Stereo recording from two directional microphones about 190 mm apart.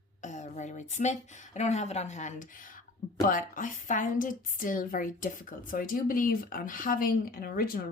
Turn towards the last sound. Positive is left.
turn(degrees=50)  # may be behind; listen again after turning